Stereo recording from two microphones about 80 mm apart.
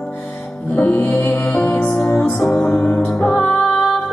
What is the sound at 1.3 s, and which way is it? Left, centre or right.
Music, centre.